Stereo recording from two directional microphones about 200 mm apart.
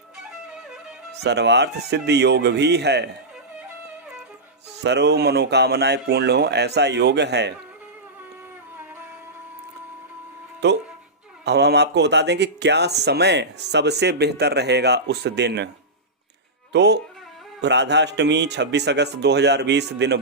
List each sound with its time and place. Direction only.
0.5 s music: 5° right (ahead or behind)
1.2 s speech: 60° right (ahead or behind)
4.8 s speech: 55° right (ahead or behind)
10.6 s speech: 60° right (ahead or behind)
16.7 s speech: 60° right (ahead or behind)